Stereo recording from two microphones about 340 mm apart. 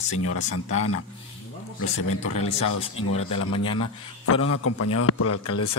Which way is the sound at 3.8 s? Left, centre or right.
Left.